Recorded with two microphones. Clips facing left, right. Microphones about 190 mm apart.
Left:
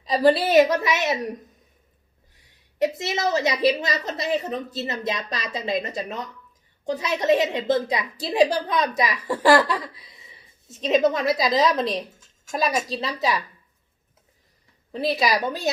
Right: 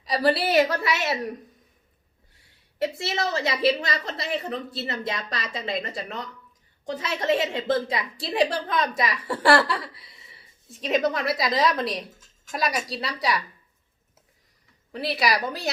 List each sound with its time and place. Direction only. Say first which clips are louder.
0.0 s a woman's voice: left 4 dB; 25° left (ahead or behind)
2.7 s a woman's voice: left 3 dB; 20° left (ahead or behind)
14.9 s a woman's voice: left 3 dB; 25° left (ahead or behind)